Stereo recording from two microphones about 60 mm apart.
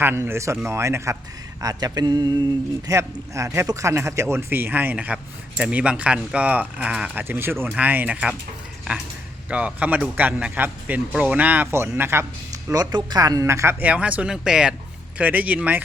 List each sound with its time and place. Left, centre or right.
0.2 s speech: right
1.6 s a sound: right
2.8 s speech: right
3.9 s a man's voice: right
7.8 s a man's voice: right
9.5 s a man's voice: right
11.9 s speech: right
12.7 s speech: right
13.5 s speech: right
13.7 s a man's voice: right
14.4 s speech: centre
15.2 s a man's voice: right